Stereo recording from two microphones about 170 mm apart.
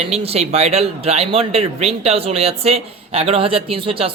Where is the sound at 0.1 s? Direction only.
35° right (ahead or behind).